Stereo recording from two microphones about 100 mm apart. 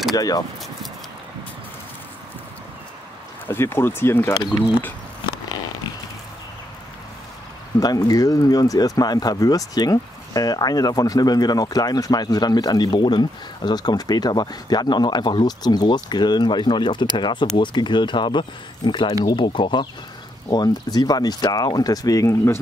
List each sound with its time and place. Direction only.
0.1 s speech: 40° left (ahead or behind)
3.4 s speech: 25° left (ahead or behind)
7.8 s speech: 40° left (ahead or behind)
20.4 s speech: 40° left (ahead or behind)